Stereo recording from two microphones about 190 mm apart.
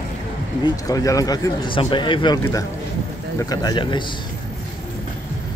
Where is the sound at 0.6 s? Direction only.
20° left (ahead or behind).